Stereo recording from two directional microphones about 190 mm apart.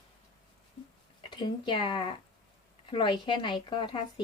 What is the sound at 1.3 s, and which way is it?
A woman's voice, 25° left (ahead or behind).